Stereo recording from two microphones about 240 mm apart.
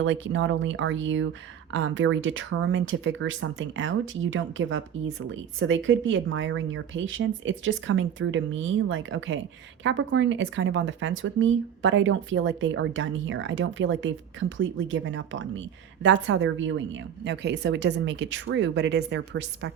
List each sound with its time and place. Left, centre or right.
0.0 s speech: right